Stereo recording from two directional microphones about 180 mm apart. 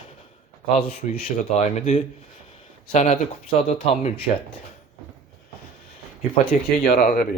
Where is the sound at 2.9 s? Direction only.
40° left (ahead or behind).